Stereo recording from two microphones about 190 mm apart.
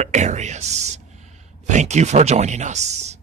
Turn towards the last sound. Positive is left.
turn(degrees=-35)  # may be behind; listen again after turning